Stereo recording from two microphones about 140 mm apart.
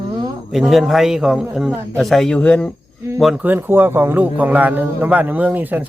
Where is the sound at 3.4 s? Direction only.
15° right (ahead or behind).